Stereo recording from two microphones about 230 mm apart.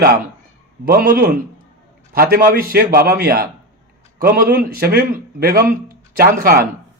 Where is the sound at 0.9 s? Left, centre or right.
Right.